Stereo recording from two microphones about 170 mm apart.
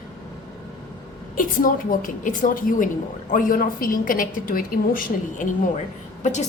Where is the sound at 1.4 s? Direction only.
50° left (ahead or behind).